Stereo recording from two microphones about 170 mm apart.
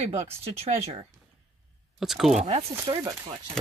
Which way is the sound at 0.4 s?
35° right (ahead or behind).